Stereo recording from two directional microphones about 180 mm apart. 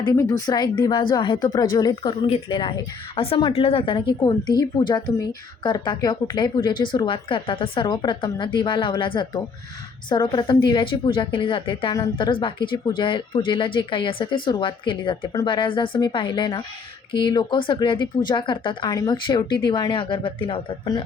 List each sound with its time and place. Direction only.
0.0 s a woman's voice: 20° left (ahead or behind)